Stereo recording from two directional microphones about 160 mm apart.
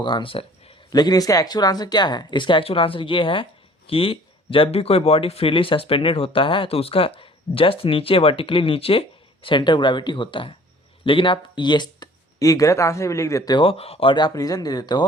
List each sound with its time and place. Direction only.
0.0 s speech: 30° left (ahead or behind)